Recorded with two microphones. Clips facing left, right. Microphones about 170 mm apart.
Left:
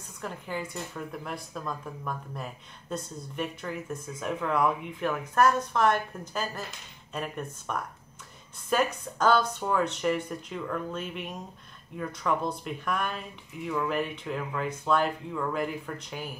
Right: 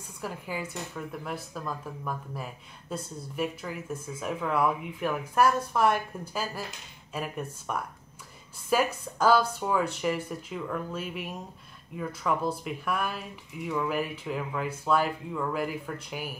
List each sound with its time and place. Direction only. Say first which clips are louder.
0.2 s speech: even; 5° right (ahead or behind)